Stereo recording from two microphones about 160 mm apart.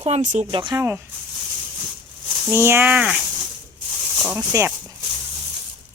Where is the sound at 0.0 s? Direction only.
35° right (ahead or behind).